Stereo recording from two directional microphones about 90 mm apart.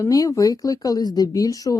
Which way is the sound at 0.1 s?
40° left (ahead or behind).